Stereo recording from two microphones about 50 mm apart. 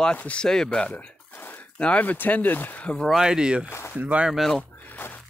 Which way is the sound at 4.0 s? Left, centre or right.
Right.